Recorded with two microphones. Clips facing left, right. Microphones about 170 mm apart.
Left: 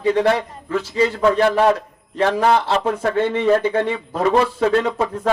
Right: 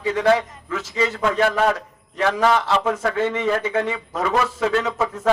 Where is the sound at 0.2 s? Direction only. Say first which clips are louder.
Even; 30° left (ahead or behind).